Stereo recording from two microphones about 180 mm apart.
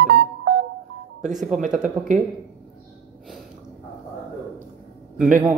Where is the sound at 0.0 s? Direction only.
60° right (ahead or behind).